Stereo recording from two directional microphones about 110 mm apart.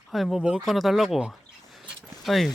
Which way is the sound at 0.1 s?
Centre (ahead or behind).